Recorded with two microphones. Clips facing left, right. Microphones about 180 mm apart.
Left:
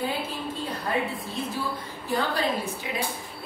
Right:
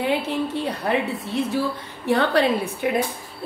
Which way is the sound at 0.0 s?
75° right (ahead or behind).